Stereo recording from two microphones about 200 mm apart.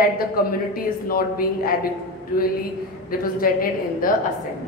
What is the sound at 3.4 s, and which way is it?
Speech, 45° left (ahead or behind).